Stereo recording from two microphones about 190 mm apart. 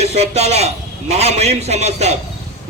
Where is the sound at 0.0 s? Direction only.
35° right (ahead or behind).